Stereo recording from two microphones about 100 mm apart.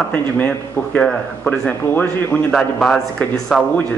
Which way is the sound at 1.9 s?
20° left (ahead or behind).